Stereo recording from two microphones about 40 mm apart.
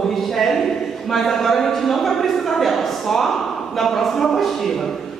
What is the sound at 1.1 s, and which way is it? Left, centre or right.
Speech, centre.